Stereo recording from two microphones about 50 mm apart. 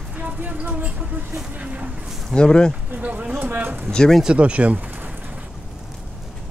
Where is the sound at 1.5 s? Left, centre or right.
Right.